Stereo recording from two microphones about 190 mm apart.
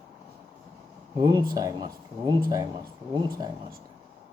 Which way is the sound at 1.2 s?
20° right (ahead or behind).